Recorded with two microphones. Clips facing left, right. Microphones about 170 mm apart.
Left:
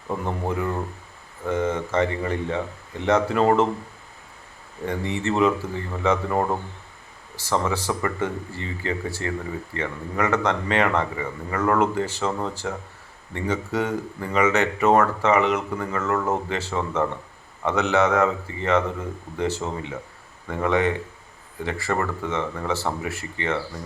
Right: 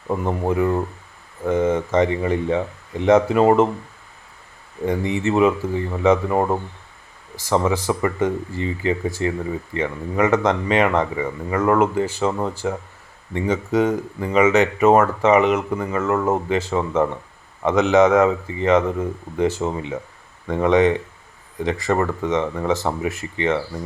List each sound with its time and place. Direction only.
1.5 s speech: 10° right (ahead or behind)
4.9 s speech: 15° right (ahead or behind)